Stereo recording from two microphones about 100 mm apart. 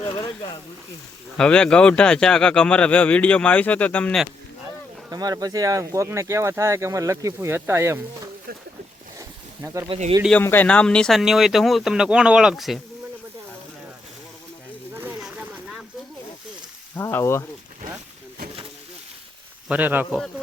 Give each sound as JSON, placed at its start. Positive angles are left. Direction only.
{"t": 0.0, "sound": "speech", "side_deg": 35}
{"t": 1.4, "sound": "speech", "side_deg": 10}
{"t": 5.1, "sound": "speech", "side_deg": -40}
{"t": 9.6, "sound": "speech", "side_deg": -30}
{"t": 9.8, "sound": "speech", "side_deg": -60}
{"t": 10.4, "sound": "speech", "side_deg": 20}
{"t": 17.0, "sound": "speech", "side_deg": 25}
{"t": 19.6, "sound": "speech", "side_deg": -15}
{"t": 20.1, "sound": "speech", "side_deg": 10}